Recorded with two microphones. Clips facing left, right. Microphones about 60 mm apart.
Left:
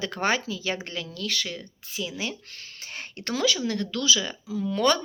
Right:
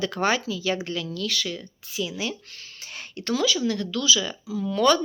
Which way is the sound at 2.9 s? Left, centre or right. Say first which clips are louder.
Right 4 dB; left.